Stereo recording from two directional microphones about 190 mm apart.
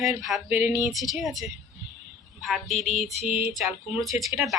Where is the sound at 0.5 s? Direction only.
10° right (ahead or behind).